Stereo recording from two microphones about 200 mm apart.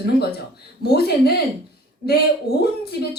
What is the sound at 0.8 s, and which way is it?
Speech, 50° left (ahead or behind).